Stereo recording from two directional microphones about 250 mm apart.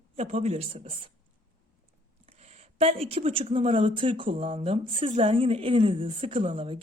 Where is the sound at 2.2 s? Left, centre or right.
Right.